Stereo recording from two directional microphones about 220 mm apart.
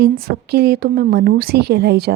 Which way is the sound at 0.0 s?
45° right (ahead or behind).